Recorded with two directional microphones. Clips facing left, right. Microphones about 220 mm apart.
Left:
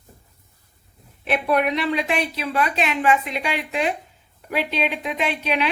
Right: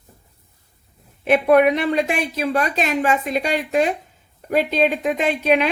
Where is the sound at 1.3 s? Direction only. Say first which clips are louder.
Right 7 dB; 50° right (ahead or behind).